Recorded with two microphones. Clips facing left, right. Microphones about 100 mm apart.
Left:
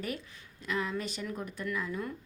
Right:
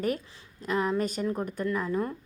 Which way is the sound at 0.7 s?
40° right (ahead or behind).